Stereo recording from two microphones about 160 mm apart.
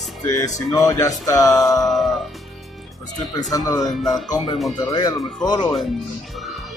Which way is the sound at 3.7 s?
Centre (ahead or behind).